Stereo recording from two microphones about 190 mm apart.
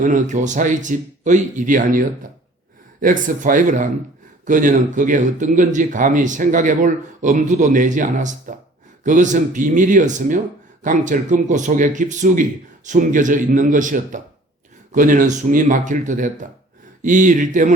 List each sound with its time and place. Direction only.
0.0 s speech: 40° right (ahead or behind)